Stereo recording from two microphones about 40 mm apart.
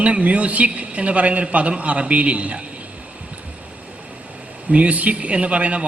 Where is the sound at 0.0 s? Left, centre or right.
Right.